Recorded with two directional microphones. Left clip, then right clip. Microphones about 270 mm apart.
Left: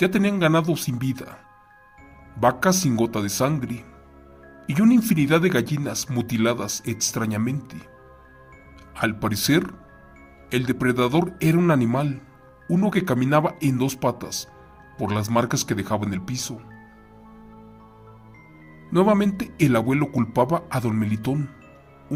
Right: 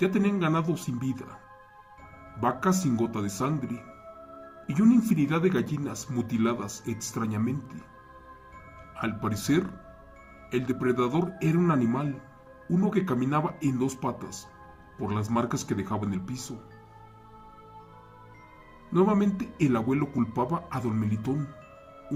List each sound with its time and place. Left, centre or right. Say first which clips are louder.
0.0 s speech: left 6 dB; left
2.4 s speech: left 7 dB; left
4.7 s speech: left 4 dB; left
9.0 s speech: left 8 dB; left
18.9 s speech: left 5 dB; left